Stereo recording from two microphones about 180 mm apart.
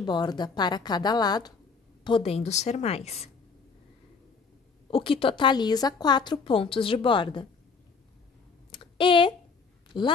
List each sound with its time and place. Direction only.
0.0 s a woman's voice: 25° left (ahead or behind)
4.9 s a woman's voice: 30° left (ahead or behind)
8.7 s a sound: 30° left (ahead or behind)
9.9 s a woman's voice: 25° left (ahead or behind)